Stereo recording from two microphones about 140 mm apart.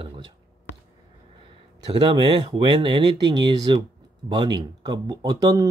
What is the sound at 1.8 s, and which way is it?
Speech, 35° right (ahead or behind).